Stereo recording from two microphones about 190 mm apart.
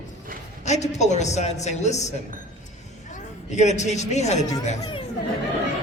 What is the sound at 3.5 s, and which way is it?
Speech, 35° left (ahead or behind).